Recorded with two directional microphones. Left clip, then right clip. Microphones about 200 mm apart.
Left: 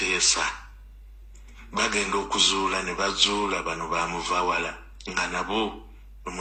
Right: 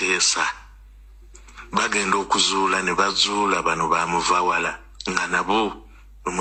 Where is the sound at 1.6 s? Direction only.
30° right (ahead or behind).